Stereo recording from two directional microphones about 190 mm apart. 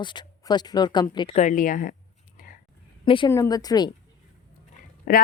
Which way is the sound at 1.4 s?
40° left (ahead or behind).